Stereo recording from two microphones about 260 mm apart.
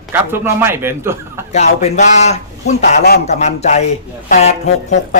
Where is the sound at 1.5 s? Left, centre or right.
Left.